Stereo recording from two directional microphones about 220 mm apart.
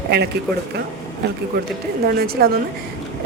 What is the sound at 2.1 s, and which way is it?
Speech, 45° right (ahead or behind).